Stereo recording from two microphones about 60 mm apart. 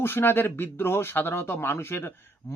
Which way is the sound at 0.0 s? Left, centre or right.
Left.